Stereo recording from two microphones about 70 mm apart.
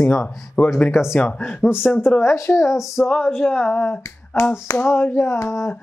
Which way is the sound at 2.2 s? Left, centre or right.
Left.